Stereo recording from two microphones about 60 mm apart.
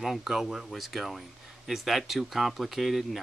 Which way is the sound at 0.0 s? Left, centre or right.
Centre.